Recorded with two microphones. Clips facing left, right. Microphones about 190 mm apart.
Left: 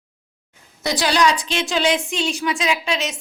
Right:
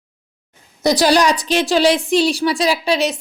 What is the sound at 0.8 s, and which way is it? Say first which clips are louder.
A woman's voice: right 5 dB; 40° right (ahead or behind).